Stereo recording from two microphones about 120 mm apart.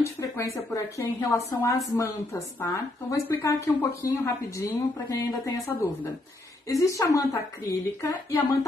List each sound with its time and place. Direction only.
0.0 s a woman's voice: 25° left (ahead or behind)